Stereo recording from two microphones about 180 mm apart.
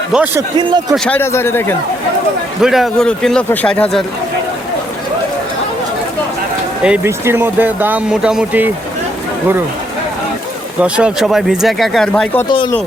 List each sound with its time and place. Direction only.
0.3 s a man's voice: 20° right (ahead or behind)
0.9 s speech: 5° left (ahead or behind)
2.6 s speech: centre (ahead or behind)
6.8 s speech: 10° right (ahead or behind)
10.8 s speech: 5° right (ahead or behind)